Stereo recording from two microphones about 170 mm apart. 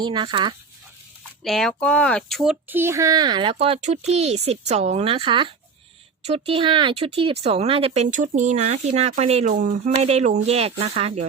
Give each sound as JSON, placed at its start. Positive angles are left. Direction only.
{"t": 0.0, "sound": "speech", "side_deg": -30}
{"t": 1.5, "sound": "speech", "side_deg": 0}
{"t": 3.6, "sound": "speech", "side_deg": -40}